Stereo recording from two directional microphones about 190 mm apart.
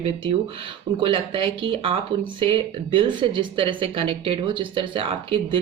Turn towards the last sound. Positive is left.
turn(degrees=-30)  # may be behind; listen again after turning